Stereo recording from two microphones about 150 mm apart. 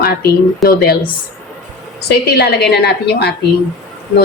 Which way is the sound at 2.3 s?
90° left.